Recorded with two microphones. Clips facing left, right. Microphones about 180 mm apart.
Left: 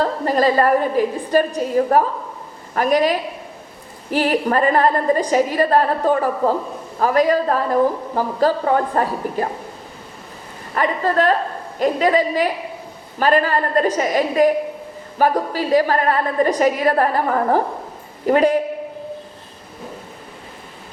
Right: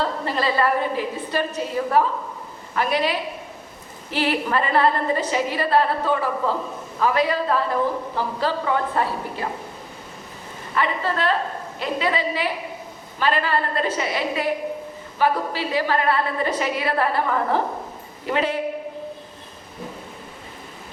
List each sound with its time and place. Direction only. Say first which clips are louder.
0.0 s speech: left 6 dB; 45° left (ahead or behind)
10.8 s speech: left 5 dB; 45° left (ahead or behind)